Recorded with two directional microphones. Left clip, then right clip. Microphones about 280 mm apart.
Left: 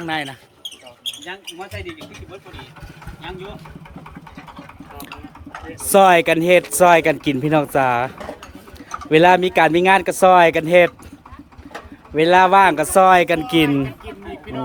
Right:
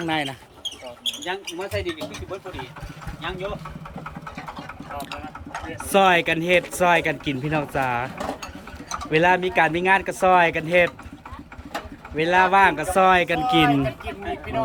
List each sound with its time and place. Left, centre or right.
0.0 s speech: centre
1.5 s speech: right
5.7 s speech: centre
12.1 s speech: left